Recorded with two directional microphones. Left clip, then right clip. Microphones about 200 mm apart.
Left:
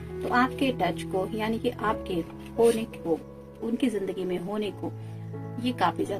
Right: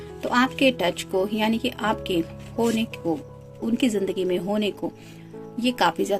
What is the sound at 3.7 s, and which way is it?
Speech, 45° right (ahead or behind).